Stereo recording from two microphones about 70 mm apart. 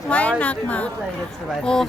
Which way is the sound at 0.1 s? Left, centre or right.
Centre.